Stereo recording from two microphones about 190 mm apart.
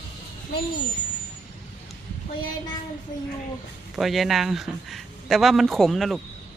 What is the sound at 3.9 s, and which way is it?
Speech, centre (ahead or behind).